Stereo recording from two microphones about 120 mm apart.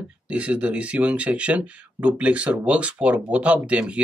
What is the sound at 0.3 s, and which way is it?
Speech, 10° right (ahead or behind).